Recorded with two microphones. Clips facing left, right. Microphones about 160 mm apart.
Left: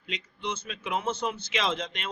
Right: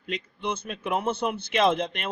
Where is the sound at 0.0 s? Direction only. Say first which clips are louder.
Right 4 dB; 55° right (ahead or behind).